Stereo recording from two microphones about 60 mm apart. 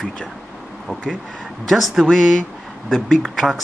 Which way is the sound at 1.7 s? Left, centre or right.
Centre.